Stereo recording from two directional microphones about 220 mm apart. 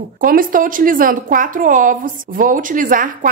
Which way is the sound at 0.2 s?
40° right (ahead or behind).